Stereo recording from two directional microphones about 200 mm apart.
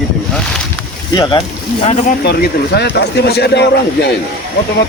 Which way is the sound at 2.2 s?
55° left (ahead or behind).